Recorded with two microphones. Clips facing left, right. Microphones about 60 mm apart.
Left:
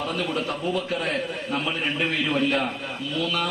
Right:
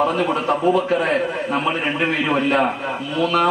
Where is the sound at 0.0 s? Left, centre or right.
Right.